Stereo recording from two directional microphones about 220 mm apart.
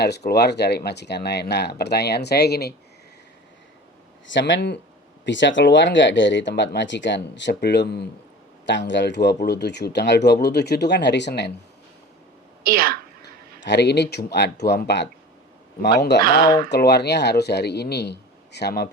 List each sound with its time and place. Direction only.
0.3 s speech: 50° left (ahead or behind)
4.3 s speech: 55° left (ahead or behind)
12.6 s a woman's voice: 40° right (ahead or behind)
13.7 s speech: 50° left (ahead or behind)